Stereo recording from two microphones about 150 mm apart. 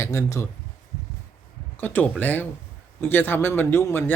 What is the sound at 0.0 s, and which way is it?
Speech, 20° left (ahead or behind).